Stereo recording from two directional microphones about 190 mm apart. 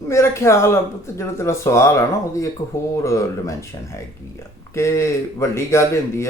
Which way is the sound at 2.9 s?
15° left (ahead or behind).